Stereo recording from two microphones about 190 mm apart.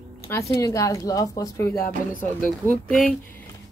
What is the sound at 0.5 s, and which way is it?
Speech, 15° left (ahead or behind).